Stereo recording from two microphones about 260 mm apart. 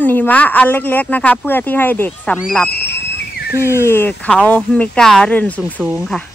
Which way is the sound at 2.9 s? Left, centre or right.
Left.